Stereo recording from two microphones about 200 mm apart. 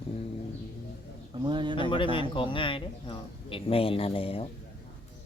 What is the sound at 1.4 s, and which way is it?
Speech, 25° right (ahead or behind).